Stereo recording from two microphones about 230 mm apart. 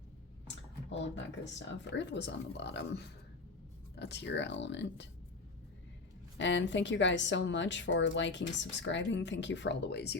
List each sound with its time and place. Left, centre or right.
0.4 s a woman's voice: left
6.3 s a woman's voice: left